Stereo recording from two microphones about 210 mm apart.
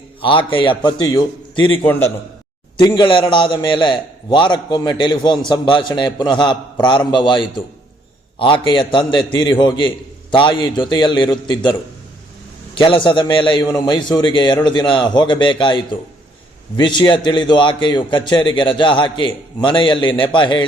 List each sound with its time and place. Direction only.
0.2 s a man's voice: 25° left (ahead or behind)